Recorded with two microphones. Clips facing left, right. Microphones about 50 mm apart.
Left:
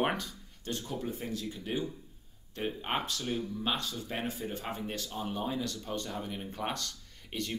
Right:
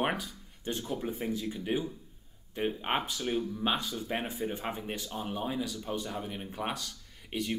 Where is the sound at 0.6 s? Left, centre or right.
Right.